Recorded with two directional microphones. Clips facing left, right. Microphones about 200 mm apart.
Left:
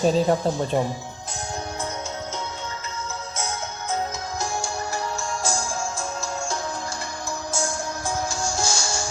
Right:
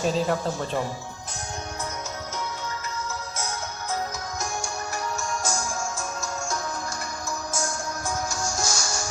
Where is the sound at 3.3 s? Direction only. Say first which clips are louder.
Left 2 dB; 25° left (ahead or behind).